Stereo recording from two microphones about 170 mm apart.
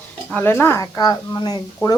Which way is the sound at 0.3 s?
10° left (ahead or behind).